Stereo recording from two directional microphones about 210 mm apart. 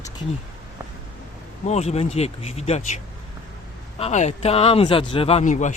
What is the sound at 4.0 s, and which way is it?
Speech, 35° left (ahead or behind).